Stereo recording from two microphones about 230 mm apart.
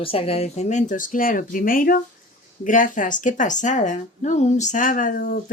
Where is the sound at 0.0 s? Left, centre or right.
Left.